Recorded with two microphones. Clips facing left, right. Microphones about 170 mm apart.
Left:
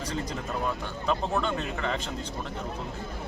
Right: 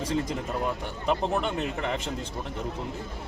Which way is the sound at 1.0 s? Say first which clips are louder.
Right 1 dB; 20° right (ahead or behind).